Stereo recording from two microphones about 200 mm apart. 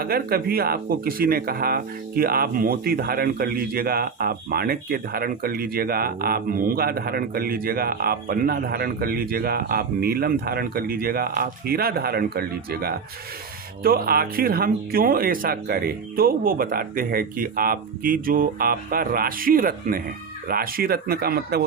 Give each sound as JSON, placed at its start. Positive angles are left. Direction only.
{"t": 0.0, "sound": "speech", "side_deg": -50}